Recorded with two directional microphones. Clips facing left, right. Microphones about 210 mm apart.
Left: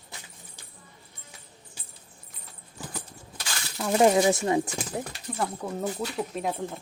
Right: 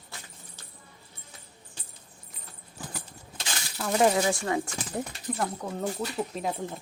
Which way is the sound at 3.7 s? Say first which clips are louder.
Left 3 dB; 10° left (ahead or behind).